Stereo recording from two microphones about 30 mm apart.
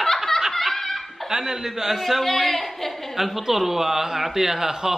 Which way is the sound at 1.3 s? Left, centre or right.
Centre.